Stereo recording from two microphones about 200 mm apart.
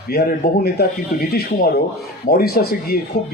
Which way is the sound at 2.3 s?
50° left (ahead or behind).